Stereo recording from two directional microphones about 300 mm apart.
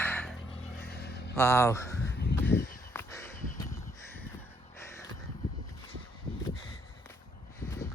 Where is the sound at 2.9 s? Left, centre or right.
Centre.